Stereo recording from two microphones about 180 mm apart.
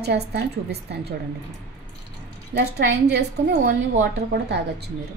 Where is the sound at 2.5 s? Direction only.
70° right (ahead or behind).